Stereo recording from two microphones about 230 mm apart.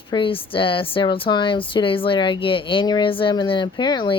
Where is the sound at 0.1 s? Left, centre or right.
Left.